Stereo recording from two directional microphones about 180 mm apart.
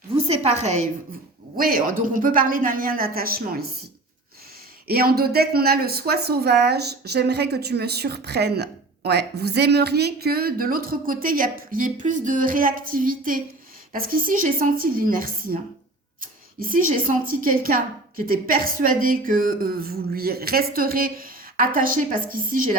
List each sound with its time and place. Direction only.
0.2 s a woman's voice: 35° right (ahead or behind)
1.5 s speech: 55° right (ahead or behind)
4.9 s speech: 60° right (ahead or behind)